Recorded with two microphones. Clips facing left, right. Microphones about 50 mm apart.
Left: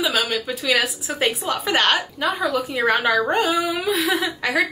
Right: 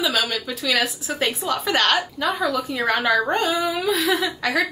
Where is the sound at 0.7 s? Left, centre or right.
Centre.